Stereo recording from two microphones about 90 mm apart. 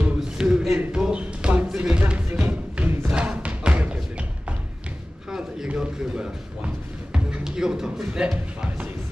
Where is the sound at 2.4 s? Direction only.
15° right (ahead or behind).